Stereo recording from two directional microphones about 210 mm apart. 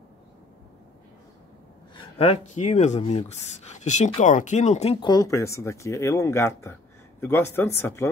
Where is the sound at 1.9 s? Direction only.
25° left (ahead or behind).